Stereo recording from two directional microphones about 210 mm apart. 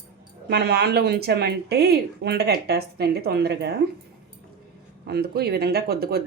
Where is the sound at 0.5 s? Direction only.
50° right (ahead or behind).